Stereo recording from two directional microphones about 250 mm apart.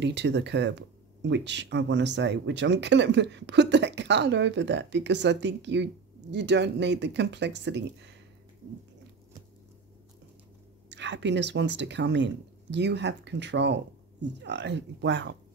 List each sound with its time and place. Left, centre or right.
0.0 s speech: right
10.9 s speech: right